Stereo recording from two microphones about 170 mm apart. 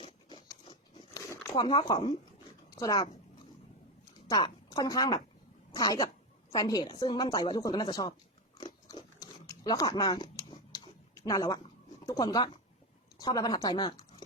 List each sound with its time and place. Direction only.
0.0 s a sound: 30° left (ahead or behind)
1.5 s a woman's voice: 25° left (ahead or behind)
4.3 s a woman's voice: 25° left (ahead or behind)
8.5 s biting: 25° left (ahead or behind)
11.1 s speech: 20° left (ahead or behind)